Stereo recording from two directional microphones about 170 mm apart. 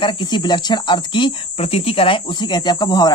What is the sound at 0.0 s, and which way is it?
Speech, 25° left (ahead or behind).